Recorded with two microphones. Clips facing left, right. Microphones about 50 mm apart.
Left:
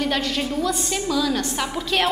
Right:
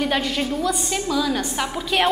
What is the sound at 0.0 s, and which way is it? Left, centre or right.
A woman's voice, centre.